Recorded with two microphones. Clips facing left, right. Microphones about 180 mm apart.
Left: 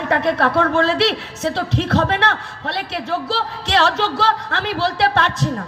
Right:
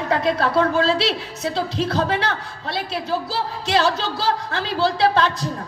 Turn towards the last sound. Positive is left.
turn(degrees=70)  # may be behind; listen again after turning